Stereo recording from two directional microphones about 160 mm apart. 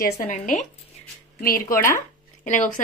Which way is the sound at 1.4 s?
65° left (ahead or behind).